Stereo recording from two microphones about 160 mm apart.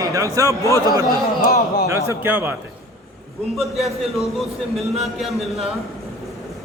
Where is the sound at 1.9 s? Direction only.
15° right (ahead or behind).